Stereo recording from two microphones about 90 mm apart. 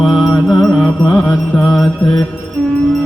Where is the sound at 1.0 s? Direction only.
40° left (ahead or behind).